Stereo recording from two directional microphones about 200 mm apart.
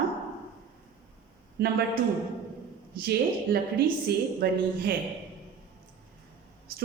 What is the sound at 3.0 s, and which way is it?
A woman's voice, 55° right (ahead or behind).